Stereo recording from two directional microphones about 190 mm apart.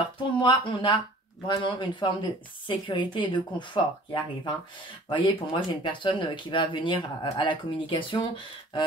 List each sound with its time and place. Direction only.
0.0 s speech: 25° left (ahead or behind)